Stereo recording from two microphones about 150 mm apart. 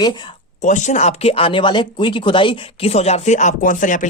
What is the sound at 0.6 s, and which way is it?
Speech, 55° left (ahead or behind).